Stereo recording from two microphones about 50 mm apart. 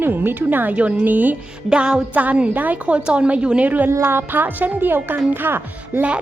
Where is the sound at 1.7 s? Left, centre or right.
Centre.